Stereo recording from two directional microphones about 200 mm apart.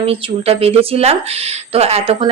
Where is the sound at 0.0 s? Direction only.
30° right (ahead or behind).